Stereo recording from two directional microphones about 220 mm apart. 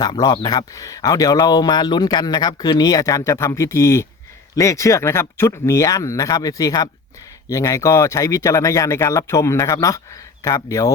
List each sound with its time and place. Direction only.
0.0 s speech: 20° left (ahead or behind)